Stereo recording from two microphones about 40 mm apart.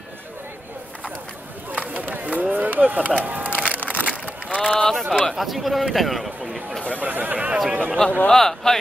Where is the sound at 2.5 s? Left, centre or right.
Right.